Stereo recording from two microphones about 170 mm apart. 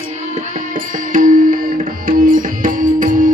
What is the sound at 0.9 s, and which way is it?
Music, 50° right (ahead or behind).